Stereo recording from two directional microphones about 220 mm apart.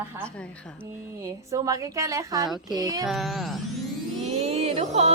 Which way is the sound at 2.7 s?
15° right (ahead or behind).